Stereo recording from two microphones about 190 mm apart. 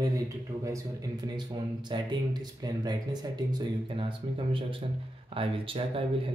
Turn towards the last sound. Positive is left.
turn(degrees=-30)  # may be behind; listen again after turning